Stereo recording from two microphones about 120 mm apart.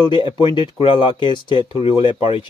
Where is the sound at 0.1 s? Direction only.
45° left (ahead or behind).